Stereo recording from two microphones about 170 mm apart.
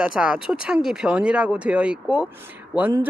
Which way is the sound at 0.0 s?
5° right (ahead or behind).